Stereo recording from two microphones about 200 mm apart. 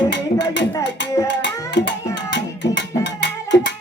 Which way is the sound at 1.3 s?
60° left (ahead or behind).